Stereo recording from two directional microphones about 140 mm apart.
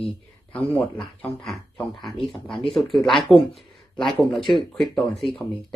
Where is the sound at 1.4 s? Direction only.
Centre (ahead or behind).